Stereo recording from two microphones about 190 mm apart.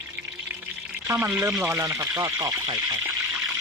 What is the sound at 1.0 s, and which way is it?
Speech, 15° right (ahead or behind).